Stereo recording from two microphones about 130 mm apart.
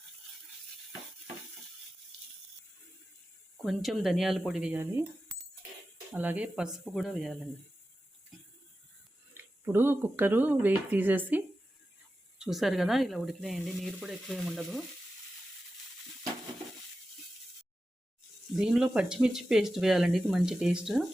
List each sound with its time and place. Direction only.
3.6 s speech: centre (ahead or behind)
6.1 s speech: 10° right (ahead or behind)
9.4 s speech: 15° right (ahead or behind)
12.4 s speech: centre (ahead or behind)
18.5 s speech: 5° right (ahead or behind)